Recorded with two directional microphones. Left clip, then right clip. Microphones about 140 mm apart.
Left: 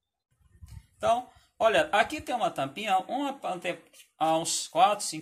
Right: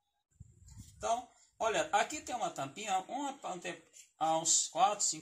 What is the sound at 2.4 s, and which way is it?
Speech, 10° left (ahead or behind).